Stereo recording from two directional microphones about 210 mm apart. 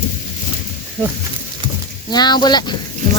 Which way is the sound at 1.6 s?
20° right (ahead or behind).